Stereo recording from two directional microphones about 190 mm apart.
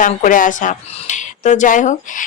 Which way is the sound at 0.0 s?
40° left (ahead or behind).